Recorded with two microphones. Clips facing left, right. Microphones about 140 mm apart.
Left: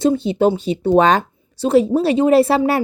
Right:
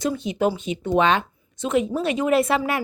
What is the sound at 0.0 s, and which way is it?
Speech, 30° left (ahead or behind).